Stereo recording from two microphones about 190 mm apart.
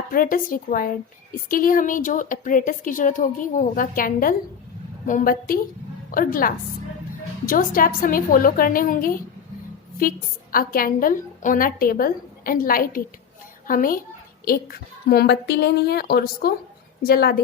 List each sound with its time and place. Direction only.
0.1 s a woman's voice: 50° left (ahead or behind)